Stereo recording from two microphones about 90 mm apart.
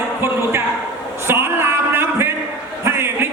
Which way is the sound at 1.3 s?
25° right (ahead or behind).